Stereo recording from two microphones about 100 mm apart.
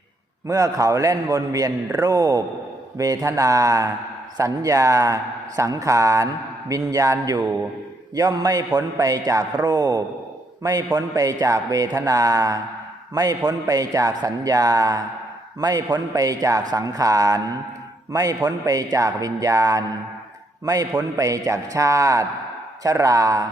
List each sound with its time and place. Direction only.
0.4 s a man's voice: 35° right (ahead or behind)